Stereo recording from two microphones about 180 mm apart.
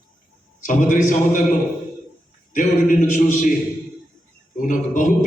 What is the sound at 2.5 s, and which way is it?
Speech, 45° left (ahead or behind).